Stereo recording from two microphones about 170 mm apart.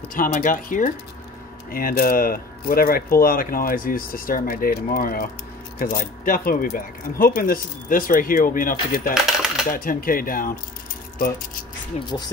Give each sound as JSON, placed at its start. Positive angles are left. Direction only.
{"t": 0.1, "sound": "speech", "side_deg": 50}
{"t": 9.1, "sound": "typewriter", "side_deg": 0}
{"t": 9.7, "sound": "speech", "side_deg": 55}
{"t": 11.9, "sound": "speech", "side_deg": 40}